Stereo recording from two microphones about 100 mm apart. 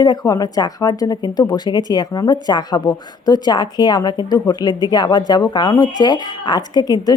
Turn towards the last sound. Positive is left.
turn(degrees=45)  # may be behind; listen again after turning